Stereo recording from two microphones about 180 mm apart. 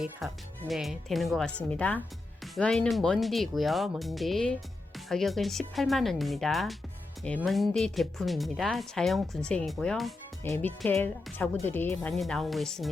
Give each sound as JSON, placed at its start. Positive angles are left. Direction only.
{"t": 0.2, "sound": "speech", "side_deg": 0}
{"t": 10.4, "sound": "speech", "side_deg": 15}